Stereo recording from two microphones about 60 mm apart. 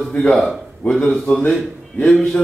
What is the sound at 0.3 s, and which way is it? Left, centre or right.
A man's voice, centre.